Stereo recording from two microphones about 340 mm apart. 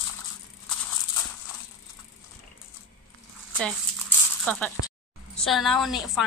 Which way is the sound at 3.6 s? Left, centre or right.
Centre.